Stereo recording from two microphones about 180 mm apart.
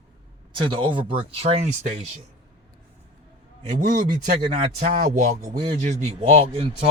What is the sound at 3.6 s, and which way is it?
Speech, 45° right (ahead or behind).